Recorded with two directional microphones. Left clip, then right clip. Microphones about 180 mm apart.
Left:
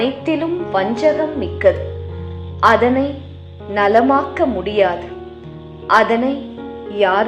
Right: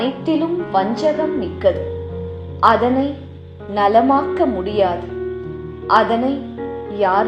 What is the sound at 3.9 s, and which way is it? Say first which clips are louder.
Speech: left 1 dB; 10° left (ahead or behind).